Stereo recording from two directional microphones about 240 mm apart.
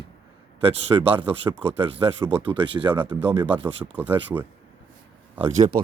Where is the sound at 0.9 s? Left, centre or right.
Centre.